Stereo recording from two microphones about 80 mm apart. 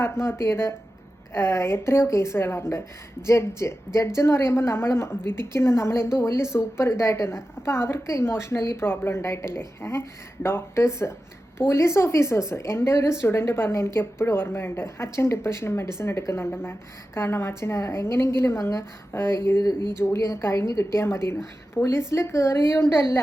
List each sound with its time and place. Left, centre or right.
0.0 s a woman's voice: left